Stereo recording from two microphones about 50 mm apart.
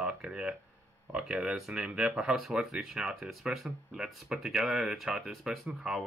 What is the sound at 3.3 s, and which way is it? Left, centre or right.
Speech, centre.